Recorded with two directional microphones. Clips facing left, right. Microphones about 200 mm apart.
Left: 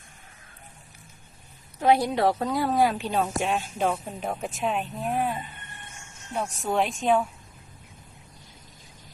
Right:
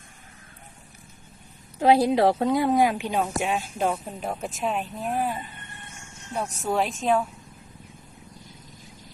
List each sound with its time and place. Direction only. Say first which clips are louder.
1.8 s a woman's voice: right 3 dB; 25° right (ahead or behind); by 7.3 s centre (ahead or behind)